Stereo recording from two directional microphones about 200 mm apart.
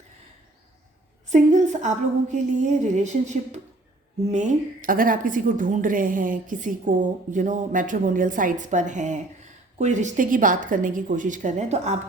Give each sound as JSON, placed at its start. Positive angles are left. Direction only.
{"t": 1.3, "sound": "a woman's voice", "side_deg": -35}